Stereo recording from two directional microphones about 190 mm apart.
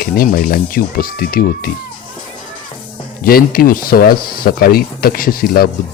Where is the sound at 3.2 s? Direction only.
50° left (ahead or behind).